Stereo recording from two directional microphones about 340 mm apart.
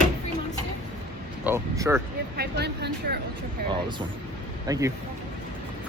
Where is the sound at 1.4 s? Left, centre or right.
Centre.